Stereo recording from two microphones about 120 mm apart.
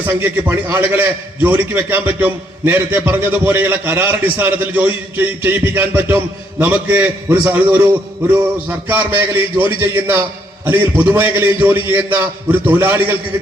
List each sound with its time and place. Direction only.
0.0 s a man's voice: 15° right (ahead or behind)